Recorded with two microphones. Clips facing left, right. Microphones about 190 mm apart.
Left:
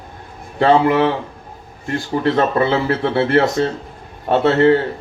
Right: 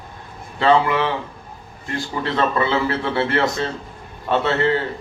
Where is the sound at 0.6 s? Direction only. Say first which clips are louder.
Left 4 dB; 50° left (ahead or behind).